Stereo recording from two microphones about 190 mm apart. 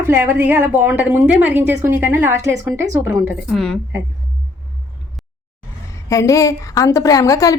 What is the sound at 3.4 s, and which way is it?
Speech, centre (ahead or behind).